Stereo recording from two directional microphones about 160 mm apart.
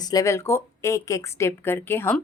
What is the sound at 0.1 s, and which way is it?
Speech, 20° left (ahead or behind).